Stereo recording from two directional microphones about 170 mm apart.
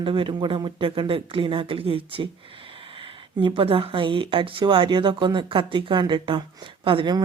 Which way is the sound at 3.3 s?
30° right (ahead or behind).